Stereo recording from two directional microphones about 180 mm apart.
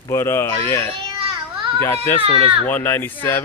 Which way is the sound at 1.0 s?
25° right (ahead or behind).